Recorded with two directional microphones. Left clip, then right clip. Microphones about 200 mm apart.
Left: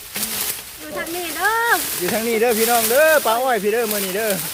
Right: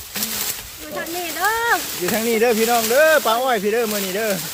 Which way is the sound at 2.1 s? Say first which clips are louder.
Right 1 dB; 10° right (ahead or behind).